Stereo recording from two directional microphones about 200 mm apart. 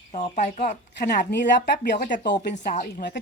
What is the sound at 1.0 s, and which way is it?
Speech, 50° left (ahead or behind).